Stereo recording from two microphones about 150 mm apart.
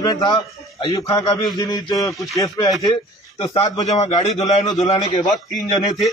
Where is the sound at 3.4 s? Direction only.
40° left (ahead or behind).